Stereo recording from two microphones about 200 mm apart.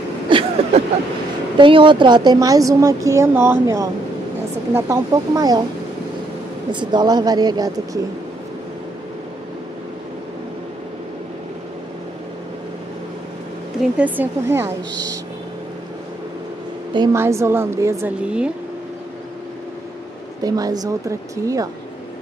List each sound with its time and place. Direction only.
0.3 s a sound: 25° right (ahead or behind)
1.6 s a woman's voice: 25° right (ahead or behind)
6.7 s a woman's voice: 20° right (ahead or behind)
13.9 s a woman's voice: 10° right (ahead or behind)
16.9 s a woman's voice: 15° right (ahead or behind)
20.4 s a woman's voice: 20° right (ahead or behind)